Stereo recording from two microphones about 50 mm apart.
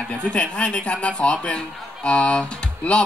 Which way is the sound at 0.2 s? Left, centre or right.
Left.